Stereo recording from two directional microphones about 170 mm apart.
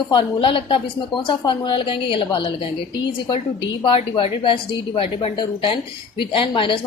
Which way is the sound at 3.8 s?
30° left (ahead or behind).